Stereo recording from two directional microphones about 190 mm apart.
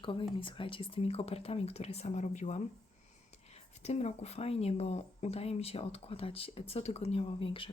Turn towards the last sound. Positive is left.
turn(degrees=30)  # may be behind; listen again after turning